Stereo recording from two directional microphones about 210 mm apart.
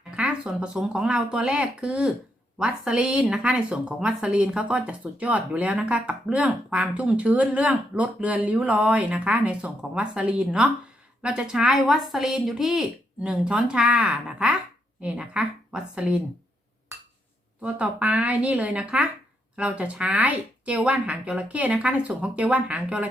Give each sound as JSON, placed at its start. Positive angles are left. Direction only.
{"t": 0.2, "sound": "speech", "side_deg": -5}
{"t": 17.6, "sound": "a woman's voice", "side_deg": -5}